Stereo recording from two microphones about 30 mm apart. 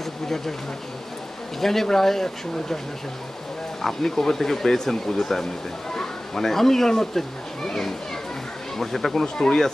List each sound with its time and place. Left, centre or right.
0.0 s a sound: centre
1.6 s speech: centre
3.8 s speech: centre
5.9 s a sound: centre
6.9 s speech: centre
9.2 s speech: left